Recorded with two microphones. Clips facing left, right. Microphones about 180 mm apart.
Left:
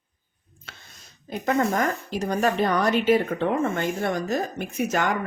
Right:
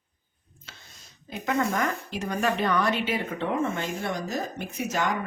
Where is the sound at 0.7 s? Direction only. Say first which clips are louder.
Left 3 dB; 60° left (ahead or behind).